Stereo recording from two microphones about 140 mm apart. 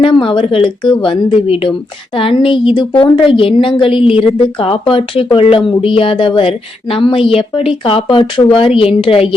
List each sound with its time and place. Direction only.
0.0 s speech: 35° left (ahead or behind)